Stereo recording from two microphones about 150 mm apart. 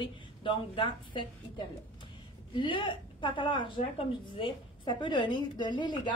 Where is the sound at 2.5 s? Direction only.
35° left (ahead or behind).